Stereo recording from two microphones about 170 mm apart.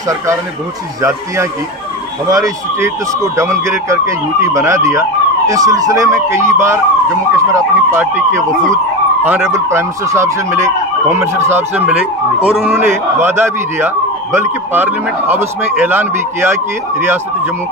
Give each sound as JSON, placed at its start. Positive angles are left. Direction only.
{"t": 1.0, "sound": "speech", "side_deg": -15}